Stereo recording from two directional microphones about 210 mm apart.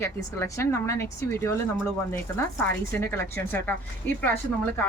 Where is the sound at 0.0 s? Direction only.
15° left (ahead or behind).